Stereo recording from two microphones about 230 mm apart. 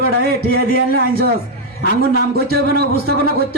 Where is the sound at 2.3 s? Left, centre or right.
Right.